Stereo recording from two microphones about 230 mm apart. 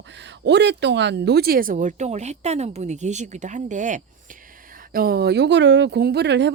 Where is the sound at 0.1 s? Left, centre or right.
Right.